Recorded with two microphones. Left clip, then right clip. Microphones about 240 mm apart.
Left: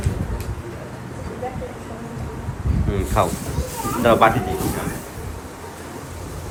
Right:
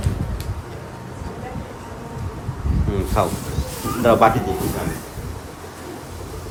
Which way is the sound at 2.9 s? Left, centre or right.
Centre.